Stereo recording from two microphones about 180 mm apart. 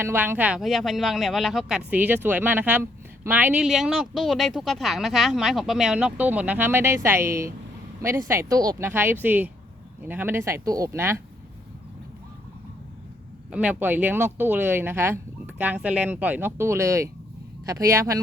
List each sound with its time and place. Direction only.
0.0 s speech: 15° right (ahead or behind)
13.5 s speech: 5° right (ahead or behind)